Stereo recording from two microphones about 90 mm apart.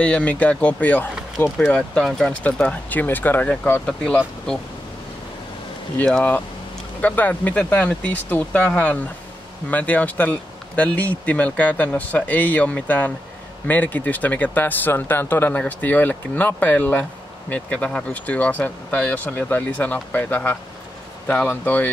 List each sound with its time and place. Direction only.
0.0 s speech: 15° left (ahead or behind)
1.7 s speech: 5° left (ahead or behind)
3.8 s speech: 10° left (ahead or behind)
6.0 s speech: 5° left (ahead or behind)
7.0 s speech: 15° left (ahead or behind)